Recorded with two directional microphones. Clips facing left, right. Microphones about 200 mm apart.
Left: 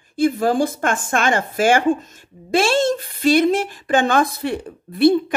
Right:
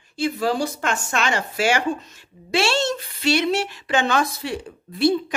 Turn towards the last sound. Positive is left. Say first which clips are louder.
# left 5 dB
turn(degrees=55)  # may be behind; listen again after turning